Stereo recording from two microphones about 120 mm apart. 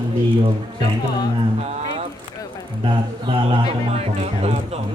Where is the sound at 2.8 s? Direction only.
45° right (ahead or behind).